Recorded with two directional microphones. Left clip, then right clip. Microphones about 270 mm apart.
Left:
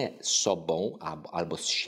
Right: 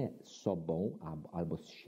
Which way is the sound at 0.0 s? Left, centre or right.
Centre.